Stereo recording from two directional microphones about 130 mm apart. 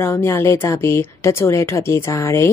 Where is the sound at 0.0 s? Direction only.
20° left (ahead or behind).